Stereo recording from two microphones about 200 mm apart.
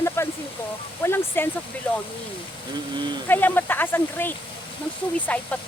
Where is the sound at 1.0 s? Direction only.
10° left (ahead or behind).